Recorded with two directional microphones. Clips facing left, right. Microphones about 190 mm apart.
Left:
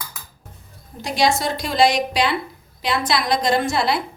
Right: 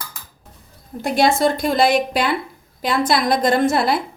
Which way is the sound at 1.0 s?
55° right (ahead or behind).